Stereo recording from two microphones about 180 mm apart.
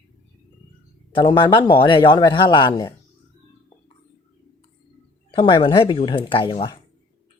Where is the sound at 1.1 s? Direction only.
25° left (ahead or behind).